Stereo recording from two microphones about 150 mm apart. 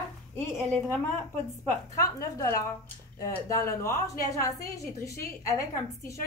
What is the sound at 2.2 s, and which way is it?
A woman's voice, 20° left (ahead or behind).